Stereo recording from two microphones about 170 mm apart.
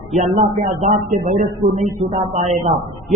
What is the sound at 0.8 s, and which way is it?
Speech, 45° right (ahead or behind).